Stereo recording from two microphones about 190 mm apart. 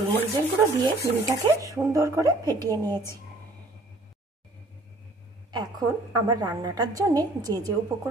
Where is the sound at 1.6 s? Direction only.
15° right (ahead or behind).